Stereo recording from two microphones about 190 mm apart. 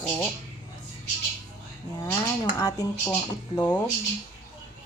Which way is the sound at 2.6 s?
20° left (ahead or behind).